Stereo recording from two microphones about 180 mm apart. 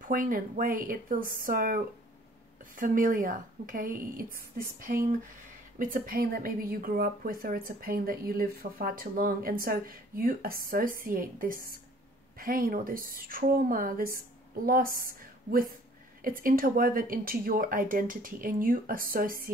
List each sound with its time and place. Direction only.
0.0 s a woman's voice: 50° right (ahead or behind)